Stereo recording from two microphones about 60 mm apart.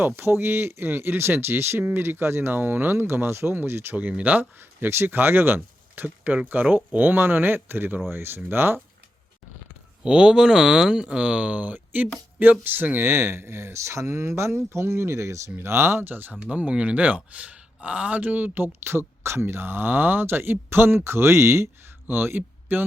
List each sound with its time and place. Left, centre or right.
0.0 s speech: right
4.2 s speech: right
10.0 s speech: centre; by 15.5 s right
15.5 s speech: right
16.3 s speech: centre; by 21.7 s right
22.0 s speech: right